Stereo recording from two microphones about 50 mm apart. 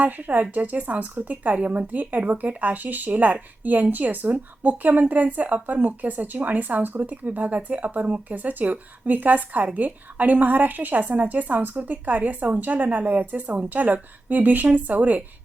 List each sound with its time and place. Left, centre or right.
0.0 s a woman's voice: right